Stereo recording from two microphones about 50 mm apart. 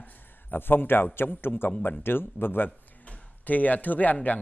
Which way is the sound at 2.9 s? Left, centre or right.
Left.